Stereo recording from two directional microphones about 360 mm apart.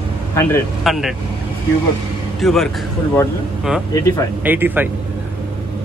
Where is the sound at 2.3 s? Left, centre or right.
Centre.